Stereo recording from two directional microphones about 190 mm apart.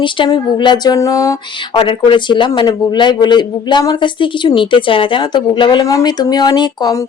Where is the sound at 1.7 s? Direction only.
30° left (ahead or behind).